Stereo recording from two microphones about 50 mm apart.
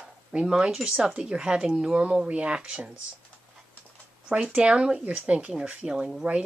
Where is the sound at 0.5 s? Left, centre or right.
Centre.